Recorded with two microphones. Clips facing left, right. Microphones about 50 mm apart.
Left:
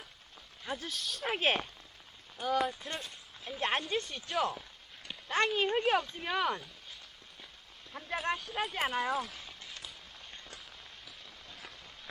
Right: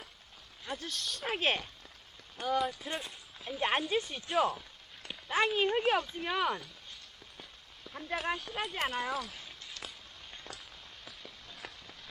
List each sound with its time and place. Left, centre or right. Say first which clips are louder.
0.6 s speech: left 1 dB; centre
7.9 s speech: even; centre
11.6 s rain on surface: right 5 dB; right